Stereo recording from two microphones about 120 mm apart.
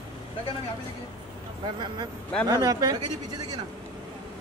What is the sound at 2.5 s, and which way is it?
Speech, 30° right (ahead or behind).